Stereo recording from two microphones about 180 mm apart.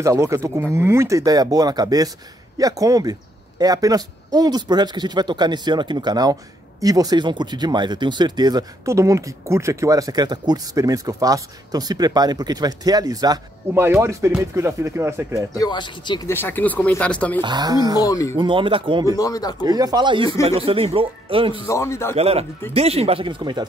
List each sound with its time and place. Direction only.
0.0 s speech: 15° right (ahead or behind)
15.5 s speech: 20° left (ahead or behind)
16.3 s speech: 10° left (ahead or behind)
17.4 s speech: 25° right (ahead or behind)
17.9 s speech: 20° left (ahead or behind)
18.3 s speech: 30° right (ahead or behind)
19.1 s speech: 20° left (ahead or behind)
19.6 s speech: 20° right (ahead or behind)
21.6 s speech: 15° left (ahead or behind)
22.1 s speech: 35° right (ahead or behind)